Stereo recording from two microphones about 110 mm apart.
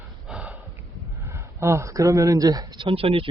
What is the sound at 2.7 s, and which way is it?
Speech, 55° right (ahead or behind).